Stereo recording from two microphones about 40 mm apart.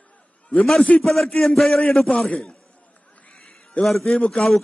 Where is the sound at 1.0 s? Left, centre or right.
Centre.